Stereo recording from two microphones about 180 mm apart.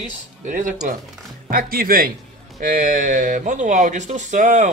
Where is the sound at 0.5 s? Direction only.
45° right (ahead or behind).